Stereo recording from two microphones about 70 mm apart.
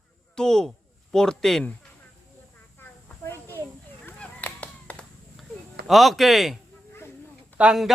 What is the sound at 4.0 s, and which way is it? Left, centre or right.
Chop, left.